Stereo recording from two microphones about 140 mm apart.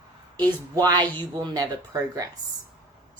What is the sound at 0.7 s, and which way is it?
Speech, 25° right (ahead or behind).